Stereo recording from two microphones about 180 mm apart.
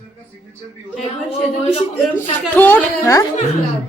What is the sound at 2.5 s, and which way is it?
Speech, 10° left (ahead or behind).